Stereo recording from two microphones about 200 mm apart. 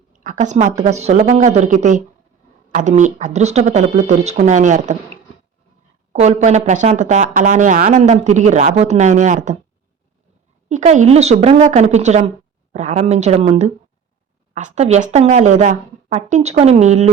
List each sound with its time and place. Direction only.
0.2 s speech: 40° right (ahead or behind)
6.1 s speech: 35° right (ahead or behind)
10.7 s speech: 40° right (ahead or behind)